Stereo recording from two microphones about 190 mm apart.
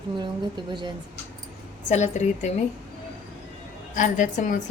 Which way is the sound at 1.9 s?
40° left (ahead or behind).